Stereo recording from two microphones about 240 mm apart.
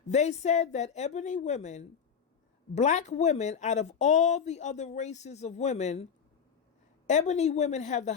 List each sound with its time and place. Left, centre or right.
0.1 s speech: left
7.1 s speech: left